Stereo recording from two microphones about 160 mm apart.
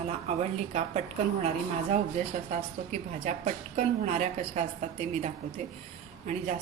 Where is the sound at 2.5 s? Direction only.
45° right (ahead or behind).